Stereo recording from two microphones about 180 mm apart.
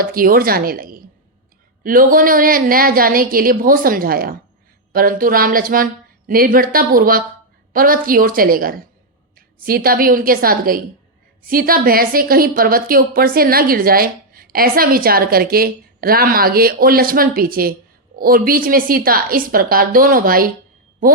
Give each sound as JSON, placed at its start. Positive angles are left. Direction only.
{"t": 0.0, "sound": "a woman's voice", "side_deg": -50}